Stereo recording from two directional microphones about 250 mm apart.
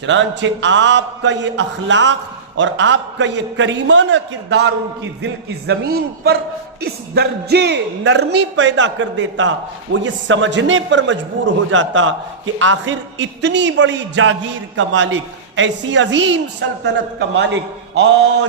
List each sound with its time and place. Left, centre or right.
0.0 s a man's voice: right
15.5 s a man's voice: right